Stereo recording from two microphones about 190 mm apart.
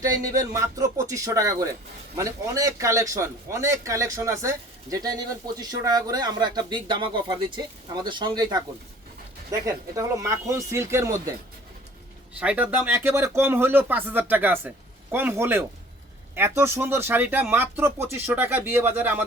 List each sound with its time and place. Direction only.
0.0 s a man's voice: 15° right (ahead or behind)
12.4 s speech: 5° right (ahead or behind)